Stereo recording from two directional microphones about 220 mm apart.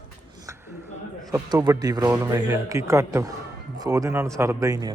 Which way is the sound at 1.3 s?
15° right (ahead or behind).